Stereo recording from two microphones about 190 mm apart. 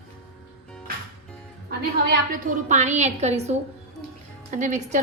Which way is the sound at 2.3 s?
40° right (ahead or behind).